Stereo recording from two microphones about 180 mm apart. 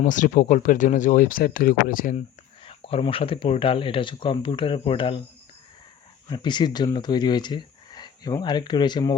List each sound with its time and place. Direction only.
0.0 s speech: 45° left (ahead or behind)
2.6 s speech: 30° left (ahead or behind)
6.2 s speech: 25° left (ahead or behind)